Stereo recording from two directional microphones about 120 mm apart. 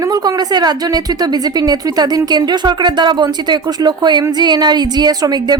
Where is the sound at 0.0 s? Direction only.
30° right (ahead or behind).